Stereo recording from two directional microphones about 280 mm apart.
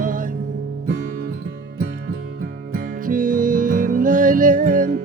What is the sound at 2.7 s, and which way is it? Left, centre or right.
Music, right.